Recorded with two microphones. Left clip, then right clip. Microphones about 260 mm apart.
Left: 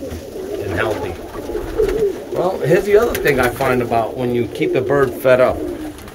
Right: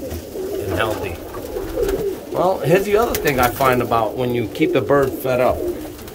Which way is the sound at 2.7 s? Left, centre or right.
Centre.